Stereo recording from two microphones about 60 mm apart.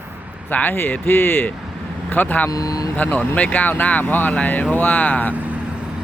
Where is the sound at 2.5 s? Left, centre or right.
Left.